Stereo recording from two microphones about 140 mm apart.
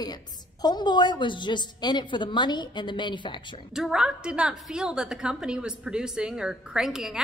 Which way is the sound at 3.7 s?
5° right (ahead or behind).